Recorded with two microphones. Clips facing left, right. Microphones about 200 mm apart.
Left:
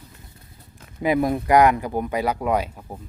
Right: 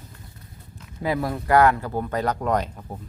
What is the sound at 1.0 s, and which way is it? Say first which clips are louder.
Speech: left 5 dB; 15° left (ahead or behind).